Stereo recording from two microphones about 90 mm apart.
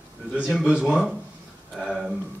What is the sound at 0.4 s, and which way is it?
A man's voice, 5° right (ahead or behind).